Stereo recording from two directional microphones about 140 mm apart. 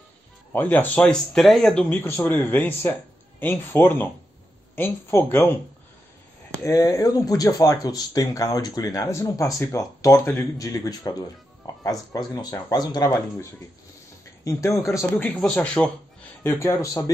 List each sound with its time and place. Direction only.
0.5 s speech: 15° left (ahead or behind)
6.6 s speech: 25° left (ahead or behind)
14.4 s speech: 20° left (ahead or behind)
16.4 s speech: 20° left (ahead or behind)